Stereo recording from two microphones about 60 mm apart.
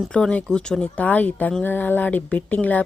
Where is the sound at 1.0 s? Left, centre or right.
Left.